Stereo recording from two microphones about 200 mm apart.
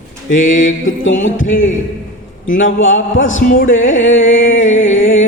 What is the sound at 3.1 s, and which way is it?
Mantra, 70° left (ahead or behind).